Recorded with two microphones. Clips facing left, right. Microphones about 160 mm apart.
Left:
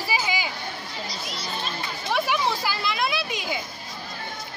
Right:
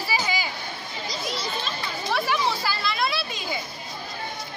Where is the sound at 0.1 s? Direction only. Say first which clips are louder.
Even; 15° left (ahead or behind).